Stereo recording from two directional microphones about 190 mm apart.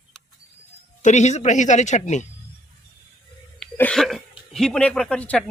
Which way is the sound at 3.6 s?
5° left (ahead or behind).